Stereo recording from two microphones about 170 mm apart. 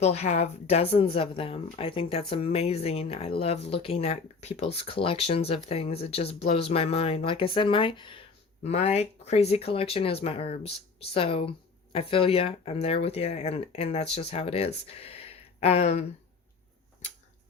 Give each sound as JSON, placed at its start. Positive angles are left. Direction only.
{"t": 0.0, "sound": "speech", "side_deg": 40}